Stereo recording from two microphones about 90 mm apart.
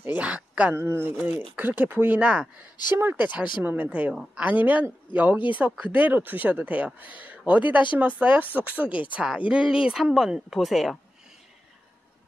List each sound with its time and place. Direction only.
0.0 s speech: 15° right (ahead or behind)
0.7 s speech: 25° right (ahead or behind); by 4.5 s 10° right (ahead or behind)
4.5 s speech: 20° right (ahead or behind); by 11.0 s centre (ahead or behind)